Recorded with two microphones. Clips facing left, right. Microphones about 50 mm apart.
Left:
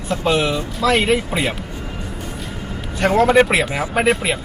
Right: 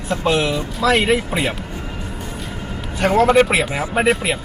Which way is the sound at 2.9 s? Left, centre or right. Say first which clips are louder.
Even; centre.